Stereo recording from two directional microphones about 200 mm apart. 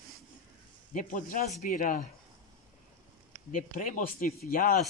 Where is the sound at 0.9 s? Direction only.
40° left (ahead or behind).